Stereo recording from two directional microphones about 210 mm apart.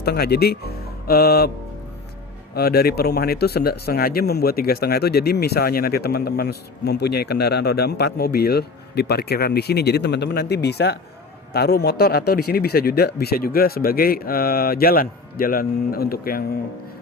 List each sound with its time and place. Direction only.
0.0 s speech: 50° left (ahead or behind)
2.6 s speech: 50° left (ahead or behind)